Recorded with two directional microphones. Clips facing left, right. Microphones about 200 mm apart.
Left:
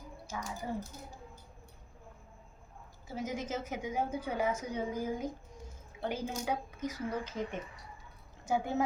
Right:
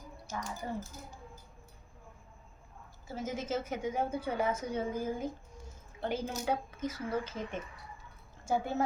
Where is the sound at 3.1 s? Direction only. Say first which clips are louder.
Right 1 dB; 15° left (ahead or behind).